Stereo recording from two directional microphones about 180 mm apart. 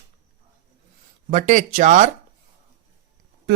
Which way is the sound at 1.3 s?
45° right (ahead or behind).